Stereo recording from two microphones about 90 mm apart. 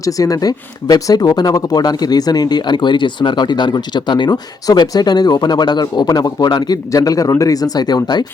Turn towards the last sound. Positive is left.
turn(degrees=45)  # may be behind; listen again after turning